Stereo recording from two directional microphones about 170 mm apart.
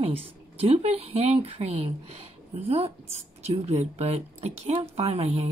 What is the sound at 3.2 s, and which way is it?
Speech, 40° right (ahead or behind).